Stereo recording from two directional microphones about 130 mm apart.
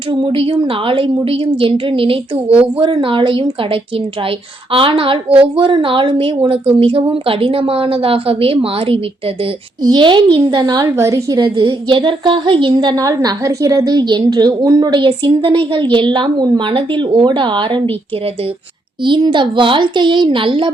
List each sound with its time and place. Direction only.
0.1 s a woman's voice: 40° right (ahead or behind)
10.9 s a woman's voice: 25° right (ahead or behind); by 17.8 s 40° right (ahead or behind)
19.0 s a woman's voice: 35° right (ahead or behind)